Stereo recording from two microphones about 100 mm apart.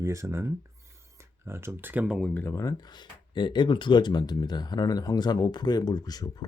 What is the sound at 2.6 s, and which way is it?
Speech, 40° left (ahead or behind).